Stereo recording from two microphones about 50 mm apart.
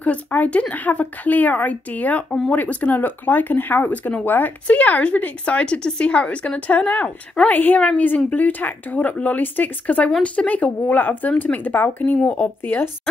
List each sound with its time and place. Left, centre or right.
0.0 s speech: left